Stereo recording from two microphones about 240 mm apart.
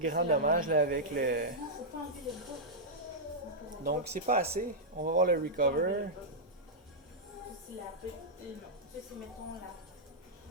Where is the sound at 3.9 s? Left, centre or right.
Right.